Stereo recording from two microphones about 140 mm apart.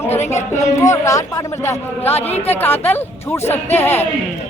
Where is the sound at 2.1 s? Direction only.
45° left (ahead or behind).